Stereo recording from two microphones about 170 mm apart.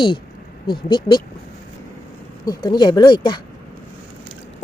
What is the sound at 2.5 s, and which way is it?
Speech, 25° left (ahead or behind).